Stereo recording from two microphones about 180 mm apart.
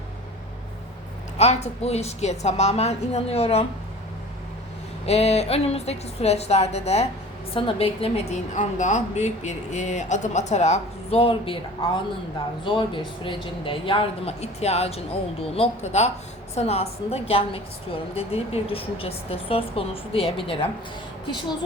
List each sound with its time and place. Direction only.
1.4 s a woman's voice: 35° left (ahead or behind)
5.0 s a woman's voice: 35° left (ahead or behind)
12.6 s a woman's voice: 25° left (ahead or behind)